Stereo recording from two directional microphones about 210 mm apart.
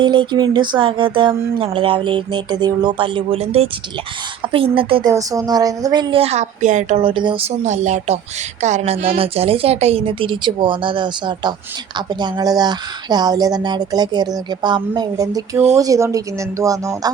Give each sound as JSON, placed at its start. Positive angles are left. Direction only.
{"t": 0.0, "sound": "speech", "side_deg": -20}